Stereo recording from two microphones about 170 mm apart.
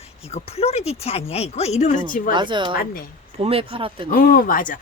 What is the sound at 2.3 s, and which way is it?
A woman's voice, 30° right (ahead or behind).